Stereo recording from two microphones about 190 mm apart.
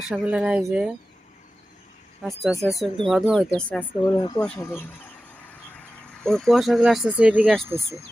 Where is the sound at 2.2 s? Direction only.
Centre (ahead or behind).